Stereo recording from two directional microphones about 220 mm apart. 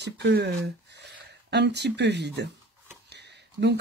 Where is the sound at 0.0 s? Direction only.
50° right (ahead or behind).